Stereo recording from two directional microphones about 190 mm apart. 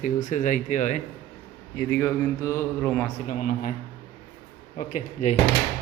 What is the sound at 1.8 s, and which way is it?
Mantra, 15° left (ahead or behind).